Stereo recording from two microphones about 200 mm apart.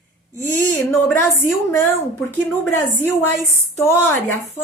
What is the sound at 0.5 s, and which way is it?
A woman's voice, 10° left (ahead or behind).